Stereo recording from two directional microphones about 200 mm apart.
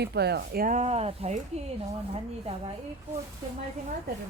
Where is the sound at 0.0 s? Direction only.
55° right (ahead or behind); by 1.4 s 30° right (ahead or behind).